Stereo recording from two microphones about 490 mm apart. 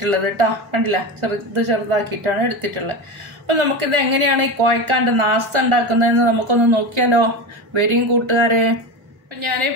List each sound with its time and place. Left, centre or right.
0.0 s a woman's voice: right